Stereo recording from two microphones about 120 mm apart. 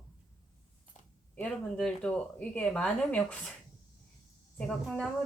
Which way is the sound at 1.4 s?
5° left (ahead or behind).